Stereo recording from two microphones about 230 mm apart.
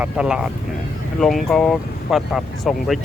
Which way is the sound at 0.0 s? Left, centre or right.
Centre.